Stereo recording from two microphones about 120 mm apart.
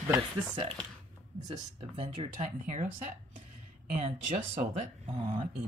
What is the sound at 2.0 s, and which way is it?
Speech, 75° right (ahead or behind).